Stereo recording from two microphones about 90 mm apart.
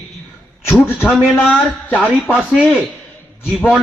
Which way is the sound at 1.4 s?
15° left (ahead or behind).